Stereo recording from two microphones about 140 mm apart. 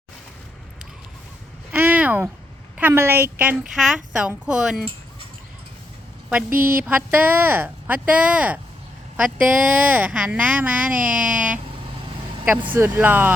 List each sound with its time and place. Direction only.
1.7 s a sound: 10° right (ahead or behind)
2.7 s a woman's voice: 15° right (ahead or behind)
6.5 s a woman's voice: 90° right
6.8 s a woman's voice: 10° right (ahead or behind)
12.7 s a woman's voice: 15° right (ahead or behind)